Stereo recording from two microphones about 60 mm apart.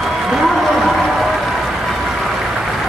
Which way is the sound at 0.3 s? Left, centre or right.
Centre.